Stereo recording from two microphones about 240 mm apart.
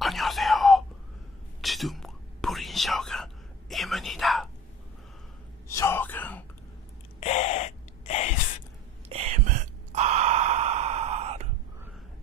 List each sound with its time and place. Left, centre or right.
0.0 s whispering: centre
5.7 s a sound: centre
7.2 s gasp: left
9.1 s sigh: right